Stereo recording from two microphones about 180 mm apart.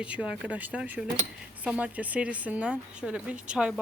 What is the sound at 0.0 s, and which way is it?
Speech, 5° right (ahead or behind).